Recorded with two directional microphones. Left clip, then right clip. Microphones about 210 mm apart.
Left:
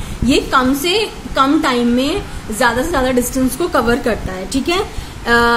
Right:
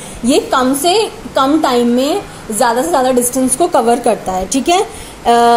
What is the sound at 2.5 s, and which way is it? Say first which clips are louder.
Speech: right 3 dB; 20° left (ahead or behind).